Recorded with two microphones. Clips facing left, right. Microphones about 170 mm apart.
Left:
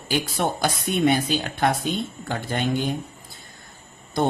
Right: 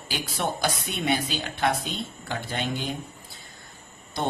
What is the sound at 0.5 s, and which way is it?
Speech, 50° left (ahead or behind).